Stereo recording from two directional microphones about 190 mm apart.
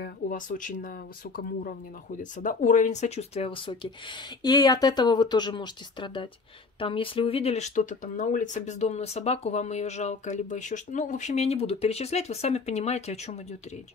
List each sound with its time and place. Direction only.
0.0 s speech: 45° left (ahead or behind)